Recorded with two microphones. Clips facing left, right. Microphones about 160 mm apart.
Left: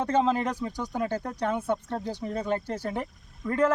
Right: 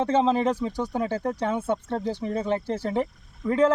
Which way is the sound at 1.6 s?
20° right (ahead or behind).